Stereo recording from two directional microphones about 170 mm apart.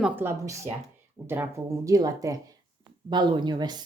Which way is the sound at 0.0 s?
15° right (ahead or behind).